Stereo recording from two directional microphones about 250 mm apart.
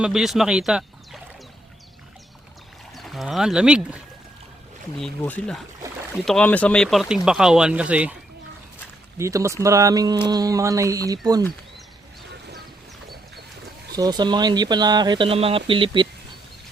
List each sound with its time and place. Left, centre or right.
0.0 s speech: centre
2.9 s speech: centre
9.1 s speech: centre
13.9 s speech: centre